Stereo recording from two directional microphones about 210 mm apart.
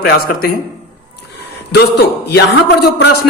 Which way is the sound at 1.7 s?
50° left (ahead or behind).